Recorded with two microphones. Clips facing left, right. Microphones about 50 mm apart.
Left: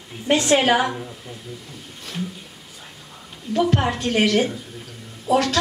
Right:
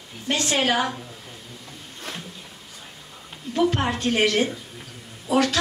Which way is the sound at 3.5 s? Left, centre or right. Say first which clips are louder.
Left 2 dB; centre.